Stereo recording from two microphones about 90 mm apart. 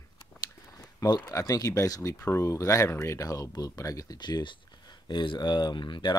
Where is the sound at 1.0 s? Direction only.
45° left (ahead or behind).